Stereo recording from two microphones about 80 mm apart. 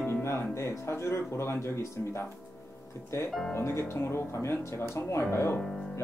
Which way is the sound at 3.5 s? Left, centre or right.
Left.